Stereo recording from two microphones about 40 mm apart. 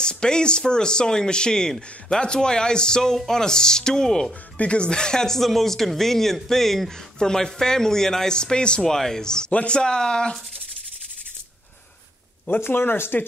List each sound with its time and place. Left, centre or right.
0.0 s speech: left
4.6 s speech: left
8.8 s speech: centre
9.5 s speech: left
12.5 s speech: left